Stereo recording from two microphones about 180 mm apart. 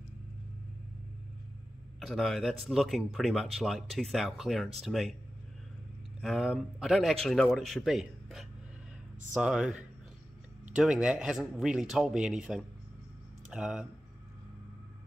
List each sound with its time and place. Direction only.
2.0 s speech: centre (ahead or behind)
6.2 s speech: centre (ahead or behind)